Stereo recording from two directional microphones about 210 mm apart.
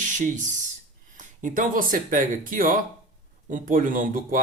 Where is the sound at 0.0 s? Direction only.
35° right (ahead or behind).